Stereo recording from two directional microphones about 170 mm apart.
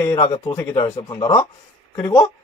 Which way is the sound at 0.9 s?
30° left (ahead or behind).